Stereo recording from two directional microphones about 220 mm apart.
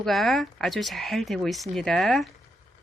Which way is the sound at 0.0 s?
Centre (ahead or behind).